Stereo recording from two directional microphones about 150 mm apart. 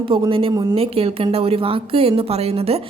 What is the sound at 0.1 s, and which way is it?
A woman's voice, 40° right (ahead or behind).